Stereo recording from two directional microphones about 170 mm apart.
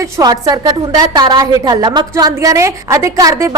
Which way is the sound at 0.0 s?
25° right (ahead or behind).